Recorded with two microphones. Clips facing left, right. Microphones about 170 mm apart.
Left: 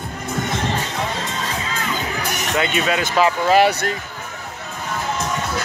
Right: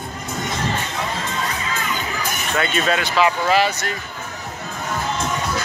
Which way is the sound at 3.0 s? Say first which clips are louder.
Left 1 dB; 40° left (ahead or behind).